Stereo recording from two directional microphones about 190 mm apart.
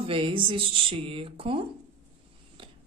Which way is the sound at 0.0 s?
30° right (ahead or behind).